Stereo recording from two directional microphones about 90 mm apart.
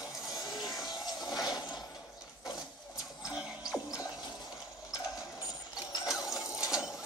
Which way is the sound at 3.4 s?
10° right (ahead or behind).